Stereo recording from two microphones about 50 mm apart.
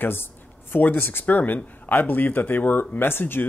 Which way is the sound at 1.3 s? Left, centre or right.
Left.